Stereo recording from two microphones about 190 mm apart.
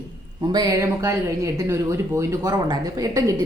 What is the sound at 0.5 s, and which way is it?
A woman's voice, 20° right (ahead or behind).